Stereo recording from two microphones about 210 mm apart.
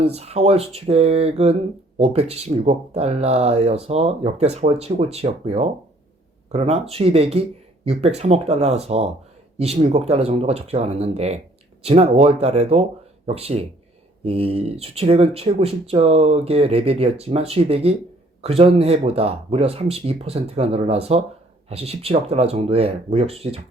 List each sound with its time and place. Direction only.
0.0 s speech: 30° right (ahead or behind)